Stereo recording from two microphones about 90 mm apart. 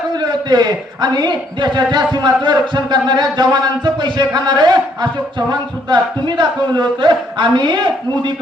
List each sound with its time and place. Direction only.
0.2 s a man's voice: 50° right (ahead or behind)